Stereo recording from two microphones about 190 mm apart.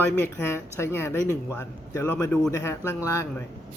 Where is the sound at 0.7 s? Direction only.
15° left (ahead or behind).